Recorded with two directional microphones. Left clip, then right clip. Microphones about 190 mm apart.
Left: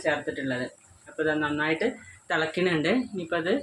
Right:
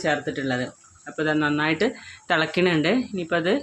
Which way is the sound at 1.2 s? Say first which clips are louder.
Right 4 dB; 60° right (ahead or behind).